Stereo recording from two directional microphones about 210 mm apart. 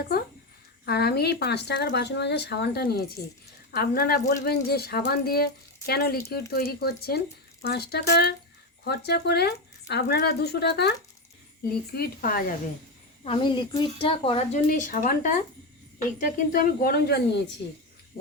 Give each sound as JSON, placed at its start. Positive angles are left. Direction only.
{"t": 0.9, "sound": "a woman's voice", "side_deg": 50}
{"t": 11.9, "sound": "a woman's voice", "side_deg": 45}
{"t": 13.2, "sound": "a woman's voice", "side_deg": 25}